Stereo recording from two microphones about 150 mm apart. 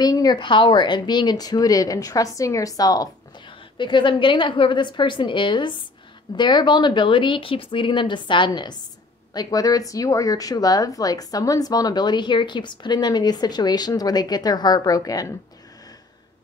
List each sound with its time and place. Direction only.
0.0 s speech: 25° left (ahead or behind)